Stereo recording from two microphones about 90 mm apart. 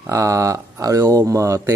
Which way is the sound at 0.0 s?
35° right (ahead or behind).